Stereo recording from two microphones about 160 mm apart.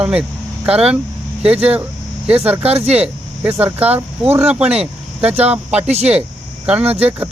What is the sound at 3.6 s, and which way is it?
Speech, 10° right (ahead or behind).